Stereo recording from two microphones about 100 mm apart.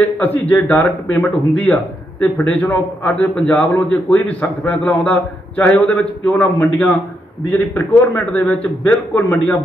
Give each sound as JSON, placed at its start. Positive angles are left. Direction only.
{"t": 0.2, "sound": "a man's voice", "side_deg": 20}